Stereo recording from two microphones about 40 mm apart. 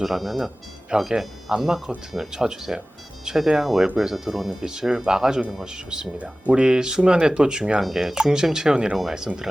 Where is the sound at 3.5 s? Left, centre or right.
Centre.